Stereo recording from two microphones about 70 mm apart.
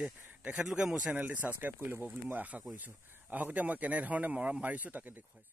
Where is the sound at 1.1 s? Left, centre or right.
Right.